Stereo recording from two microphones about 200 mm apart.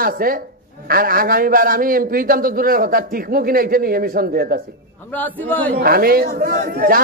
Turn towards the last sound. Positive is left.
turn(degrees=-45)  # may be behind; listen again after turning